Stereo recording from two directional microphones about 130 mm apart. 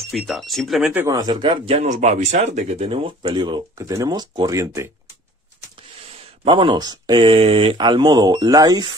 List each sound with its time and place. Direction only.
0.1 s speech: centre (ahead or behind)
0.9 s speech: 25° right (ahead or behind)
1.5 s speech: 55° right (ahead or behind)
2.9 s speech: 40° right (ahead or behind)
3.7 s speech: 25° right (ahead or behind)
6.4 s speech: 40° right (ahead or behind)